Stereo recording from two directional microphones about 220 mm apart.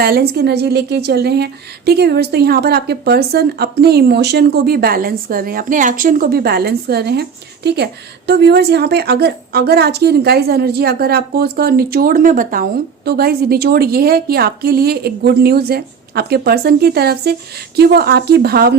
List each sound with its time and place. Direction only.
0.0 s a woman's voice: 45° right (ahead or behind)